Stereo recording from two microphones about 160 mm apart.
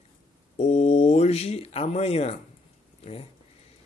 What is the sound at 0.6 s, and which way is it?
Speech, 45° left (ahead or behind).